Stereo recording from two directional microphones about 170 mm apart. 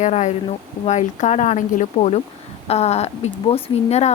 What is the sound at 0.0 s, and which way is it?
A woman's voice, 40° left (ahead or behind).